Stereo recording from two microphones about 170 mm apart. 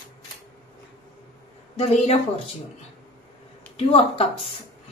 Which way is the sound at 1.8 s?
35° left (ahead or behind).